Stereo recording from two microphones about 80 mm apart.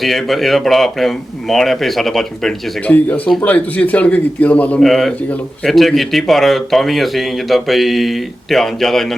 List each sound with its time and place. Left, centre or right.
0.0 s speech: centre
2.8 s a man's voice: centre
4.8 s speech: centre